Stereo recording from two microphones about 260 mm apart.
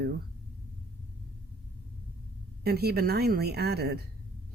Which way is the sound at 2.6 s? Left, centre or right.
Right.